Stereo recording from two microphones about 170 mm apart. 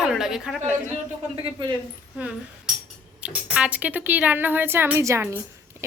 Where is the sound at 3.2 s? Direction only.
5° right (ahead or behind).